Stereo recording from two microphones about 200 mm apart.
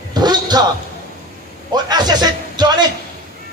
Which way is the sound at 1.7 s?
20° right (ahead or behind).